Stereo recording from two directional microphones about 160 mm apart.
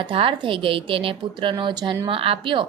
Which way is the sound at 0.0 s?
35° right (ahead or behind).